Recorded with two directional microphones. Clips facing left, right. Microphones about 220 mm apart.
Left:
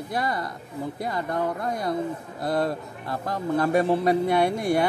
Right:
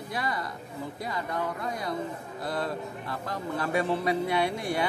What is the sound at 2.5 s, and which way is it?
Speech, 40° left (ahead or behind).